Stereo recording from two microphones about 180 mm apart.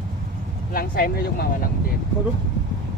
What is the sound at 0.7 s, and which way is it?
Speech, 55° left (ahead or behind).